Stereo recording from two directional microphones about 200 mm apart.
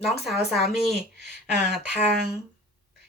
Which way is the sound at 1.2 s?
55° right (ahead or behind).